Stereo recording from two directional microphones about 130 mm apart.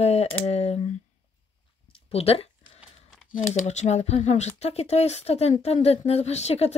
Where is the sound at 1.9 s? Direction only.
50° left (ahead or behind).